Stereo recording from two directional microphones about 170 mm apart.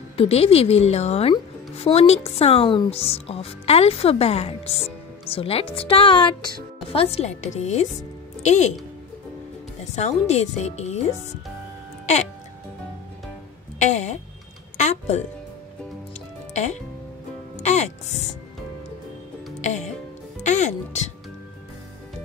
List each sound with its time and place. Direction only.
0.2 s speech: 35° left (ahead or behind)
9.9 s speech: 40° left (ahead or behind)
13.7 s speech: 45° left (ahead or behind)
17.6 s speech: 40° left (ahead or behind)
19.6 s music: 45° left (ahead or behind)
20.4 s speech: 45° left (ahead or behind)